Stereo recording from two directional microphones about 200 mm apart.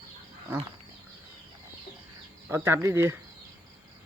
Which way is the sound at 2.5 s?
10° right (ahead or behind).